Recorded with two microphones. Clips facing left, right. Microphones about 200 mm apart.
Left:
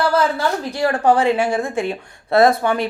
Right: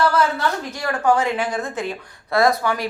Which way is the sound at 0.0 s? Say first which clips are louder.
Left 1 dB; 30° left (ahead or behind).